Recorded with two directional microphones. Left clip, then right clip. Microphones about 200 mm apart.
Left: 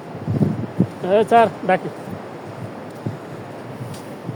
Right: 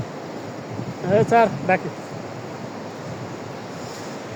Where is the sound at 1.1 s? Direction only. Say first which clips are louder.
Left 2 dB; 20° left (ahead or behind).